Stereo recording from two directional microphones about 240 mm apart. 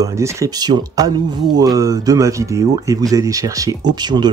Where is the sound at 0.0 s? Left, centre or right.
Centre.